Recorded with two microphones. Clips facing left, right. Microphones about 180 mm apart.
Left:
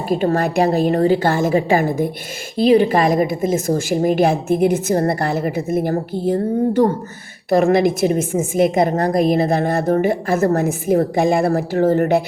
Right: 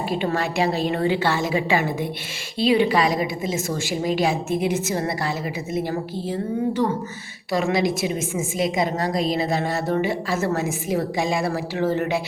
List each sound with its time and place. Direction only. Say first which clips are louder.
0.1 s a woman's voice: left 9 dB; 45° left (ahead or behind)